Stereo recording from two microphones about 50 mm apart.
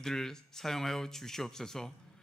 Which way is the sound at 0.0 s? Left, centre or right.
Centre.